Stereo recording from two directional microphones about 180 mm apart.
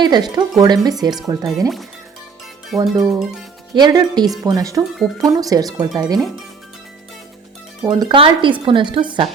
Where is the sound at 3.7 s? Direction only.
25° right (ahead or behind).